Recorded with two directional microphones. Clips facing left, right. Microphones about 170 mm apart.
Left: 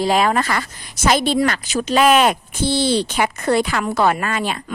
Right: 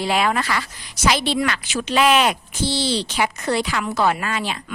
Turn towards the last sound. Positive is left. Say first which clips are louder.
# left 3 dB
turn(degrees=50)  # may be behind; listen again after turning